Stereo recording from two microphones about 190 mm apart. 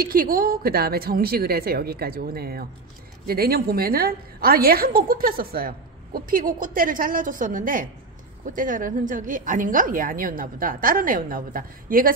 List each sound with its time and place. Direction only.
0.0 s a woman's voice: 50° right (ahead or behind)